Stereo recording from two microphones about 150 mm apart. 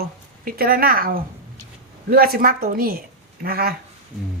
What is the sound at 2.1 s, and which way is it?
A woman's voice, 85° right.